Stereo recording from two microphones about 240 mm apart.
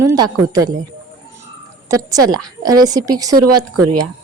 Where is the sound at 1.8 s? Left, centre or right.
Centre.